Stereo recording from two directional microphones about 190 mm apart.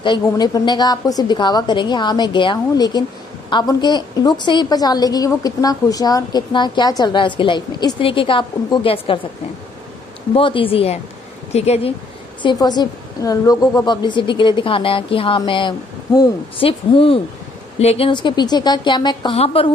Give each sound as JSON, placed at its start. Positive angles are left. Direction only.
{"t": 0.0, "sound": "a woman's voice", "side_deg": 25}
{"t": 10.3, "sound": "a woman's voice", "side_deg": 30}
{"t": 12.4, "sound": "a woman's voice", "side_deg": 25}